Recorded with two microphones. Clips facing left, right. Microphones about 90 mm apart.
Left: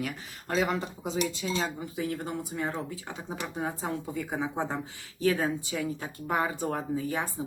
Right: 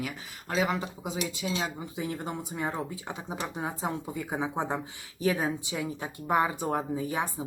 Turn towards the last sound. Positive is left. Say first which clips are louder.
# right 1 dB
turn(degrees=-15)  # may be behind; listen again after turning